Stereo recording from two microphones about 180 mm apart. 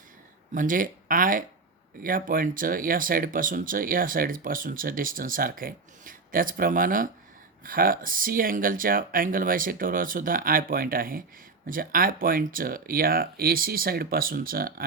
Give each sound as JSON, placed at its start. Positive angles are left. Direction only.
{"t": 0.5, "sound": "speech", "side_deg": -50}